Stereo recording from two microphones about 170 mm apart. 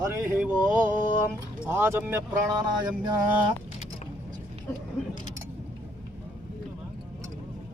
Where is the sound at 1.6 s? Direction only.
15° right (ahead or behind).